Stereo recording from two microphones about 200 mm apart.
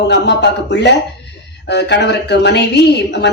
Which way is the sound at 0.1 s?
60° left (ahead or behind).